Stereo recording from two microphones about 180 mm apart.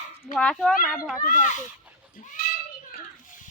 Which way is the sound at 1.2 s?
45° left (ahead or behind).